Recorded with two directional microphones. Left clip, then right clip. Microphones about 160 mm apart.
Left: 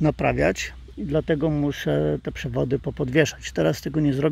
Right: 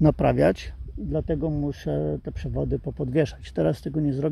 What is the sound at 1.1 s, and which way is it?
Speech, 15° left (ahead or behind).